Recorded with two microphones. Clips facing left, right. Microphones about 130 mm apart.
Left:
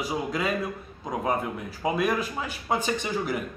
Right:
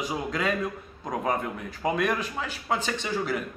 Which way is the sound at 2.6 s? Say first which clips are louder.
Left 2 dB; 15° left (ahead or behind).